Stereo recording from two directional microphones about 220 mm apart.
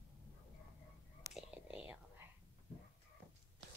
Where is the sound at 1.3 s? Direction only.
5° right (ahead or behind).